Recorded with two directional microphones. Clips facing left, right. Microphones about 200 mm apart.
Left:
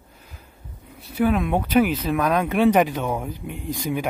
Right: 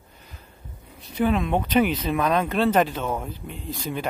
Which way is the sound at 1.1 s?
5° left (ahead or behind).